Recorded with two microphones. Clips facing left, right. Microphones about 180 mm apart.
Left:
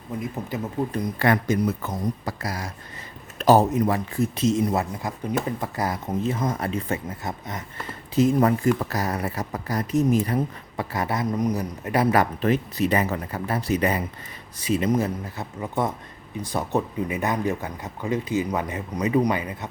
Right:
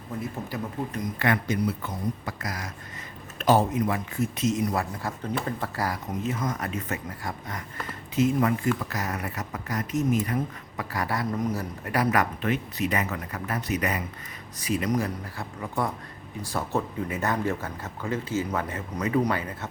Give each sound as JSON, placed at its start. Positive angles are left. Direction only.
{"t": 1.2, "sound": "speech", "side_deg": 40}
{"t": 2.4, "sound": "speech", "side_deg": 30}
{"t": 3.3, "sound": "speech", "side_deg": 40}
{"t": 8.1, "sound": "speech", "side_deg": 40}